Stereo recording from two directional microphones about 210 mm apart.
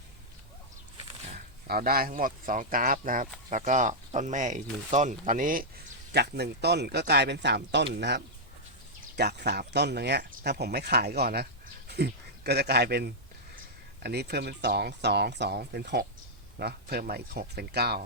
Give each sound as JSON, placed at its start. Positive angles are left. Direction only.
{"t": 1.6, "sound": "speech", "side_deg": -45}
{"t": 6.1, "sound": "speech", "side_deg": -50}